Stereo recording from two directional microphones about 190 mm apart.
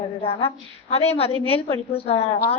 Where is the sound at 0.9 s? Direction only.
35° left (ahead or behind).